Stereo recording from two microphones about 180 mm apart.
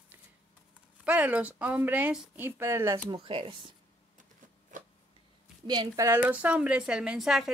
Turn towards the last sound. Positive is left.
turn(degrees=0)  # may be behind; listen again after turning